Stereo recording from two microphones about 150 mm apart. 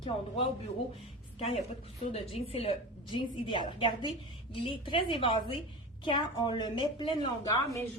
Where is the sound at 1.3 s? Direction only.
40° left (ahead or behind).